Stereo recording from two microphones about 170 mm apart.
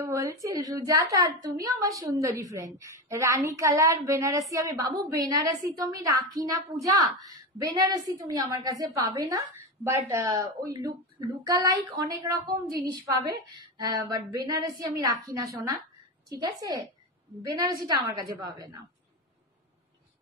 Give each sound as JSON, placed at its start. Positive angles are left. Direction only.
{"t": 0.0, "sound": "a woman's voice", "side_deg": -20}
{"t": 13.7, "sound": "a woman's voice", "side_deg": -20}